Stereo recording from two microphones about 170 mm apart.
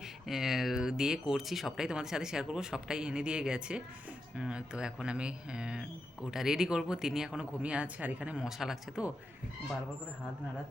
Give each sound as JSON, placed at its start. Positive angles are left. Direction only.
{"t": 0.3, "sound": "speech", "side_deg": 0}